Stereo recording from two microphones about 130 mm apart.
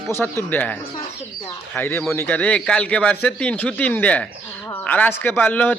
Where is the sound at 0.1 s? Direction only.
15° left (ahead or behind).